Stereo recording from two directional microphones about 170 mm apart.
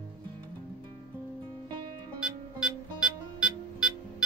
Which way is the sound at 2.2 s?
5° right (ahead or behind).